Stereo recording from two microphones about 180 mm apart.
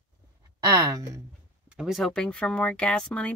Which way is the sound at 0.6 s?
20° right (ahead or behind).